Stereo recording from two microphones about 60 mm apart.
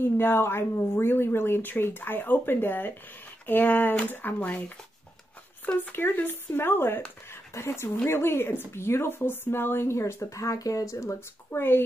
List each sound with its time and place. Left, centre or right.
0.0 s speech: left
11.5 s speech: left